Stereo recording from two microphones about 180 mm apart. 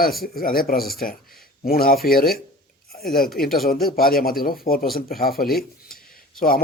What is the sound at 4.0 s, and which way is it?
A man's voice, 55° left (ahead or behind).